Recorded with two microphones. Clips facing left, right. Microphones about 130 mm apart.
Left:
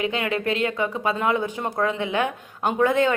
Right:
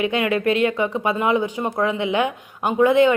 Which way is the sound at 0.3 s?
30° left (ahead or behind).